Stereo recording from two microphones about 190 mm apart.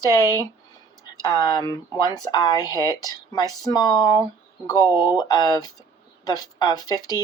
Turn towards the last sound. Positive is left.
turn(degrees=20)  # may be behind; listen again after turning